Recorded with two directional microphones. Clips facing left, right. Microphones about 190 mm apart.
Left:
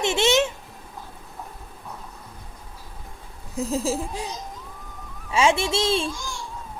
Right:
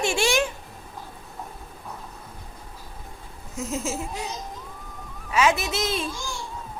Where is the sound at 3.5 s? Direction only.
35° left (ahead or behind).